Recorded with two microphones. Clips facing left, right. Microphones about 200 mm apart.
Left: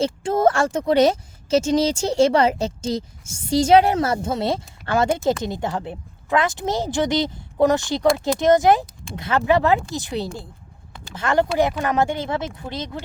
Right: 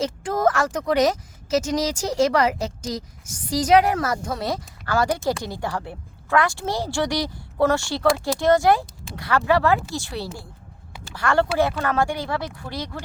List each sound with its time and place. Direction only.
0.0 s speech: 25° left (ahead or behind)